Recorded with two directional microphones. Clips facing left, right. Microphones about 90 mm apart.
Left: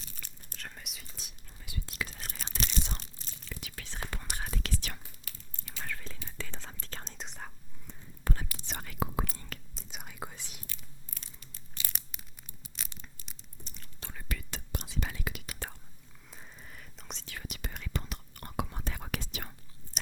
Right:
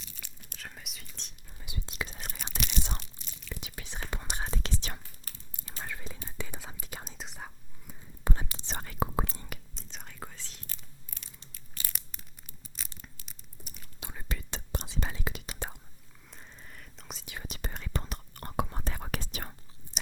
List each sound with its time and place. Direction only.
0.2 s whispering: 5° right (ahead or behind)
1.6 s whispering: 20° right (ahead or behind)
2.4 s a sound: 35° left (ahead or behind)
3.5 s whispering: 20° right (ahead or behind)
5.3 s whispering: 40° right (ahead or behind)
5.8 s whispering: 15° right (ahead or behind)
8.2 s whispering: 20° right (ahead or behind)
9.7 s whispering: 10° left (ahead or behind)
11.1 s a sound: 35° left (ahead or behind)
12.8 s a sound: centre (ahead or behind)
13.2 s whispering: 5° right (ahead or behind)
16.3 s whispering: centre (ahead or behind)
17.2 s whispering: 25° right (ahead or behind)